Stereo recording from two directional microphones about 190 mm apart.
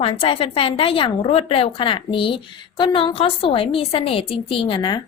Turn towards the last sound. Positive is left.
turn(degrees=25)  # may be behind; listen again after turning